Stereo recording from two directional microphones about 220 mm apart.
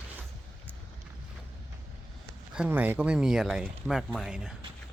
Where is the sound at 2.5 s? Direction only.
5° right (ahead or behind).